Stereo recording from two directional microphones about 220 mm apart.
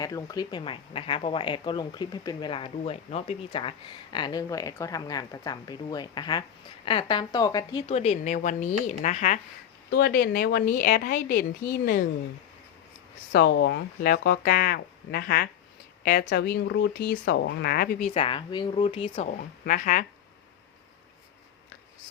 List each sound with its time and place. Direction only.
0.0 s speech: 15° left (ahead or behind); by 9.4 s 35° left (ahead or behind)
9.9 s a woman's voice: 45° left (ahead or behind)
13.3 s speech: 50° left (ahead or behind)
18.1 s speech: 25° left (ahead or behind)
19.4 s a woman's voice: 35° left (ahead or behind)